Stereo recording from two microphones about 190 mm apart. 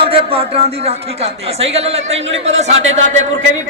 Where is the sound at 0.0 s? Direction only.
30° right (ahead or behind).